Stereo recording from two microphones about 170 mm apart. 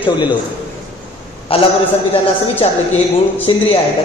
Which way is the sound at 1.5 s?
35° left (ahead or behind).